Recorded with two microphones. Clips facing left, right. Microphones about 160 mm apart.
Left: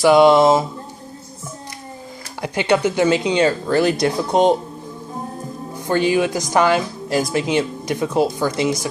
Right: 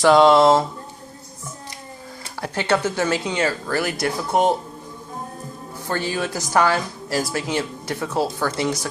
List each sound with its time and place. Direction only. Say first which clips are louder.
0.0 s speech: left 2 dB; 10° left (ahead or behind)
2.4 s speech: left 4 dB; 15° left (ahead or behind)
5.9 s speech: left 7 dB; 15° left (ahead or behind)